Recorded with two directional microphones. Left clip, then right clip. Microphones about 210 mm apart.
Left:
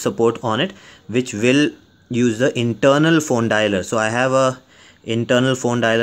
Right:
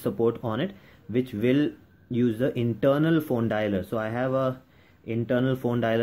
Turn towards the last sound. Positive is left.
turn(degrees=15)  # may be behind; listen again after turning